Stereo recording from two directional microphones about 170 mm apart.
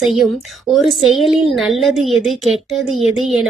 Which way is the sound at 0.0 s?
Centre (ahead or behind).